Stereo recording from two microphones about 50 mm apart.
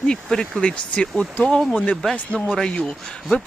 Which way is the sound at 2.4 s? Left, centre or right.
Centre.